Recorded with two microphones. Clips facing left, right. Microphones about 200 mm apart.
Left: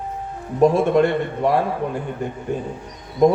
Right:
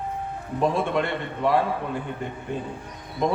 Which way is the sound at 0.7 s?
45° left (ahead or behind).